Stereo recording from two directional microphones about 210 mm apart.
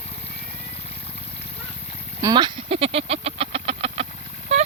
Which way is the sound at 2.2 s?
20° right (ahead or behind).